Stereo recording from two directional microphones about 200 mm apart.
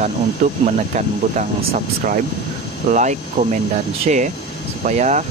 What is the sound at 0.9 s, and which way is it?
Speech, 40° right (ahead or behind).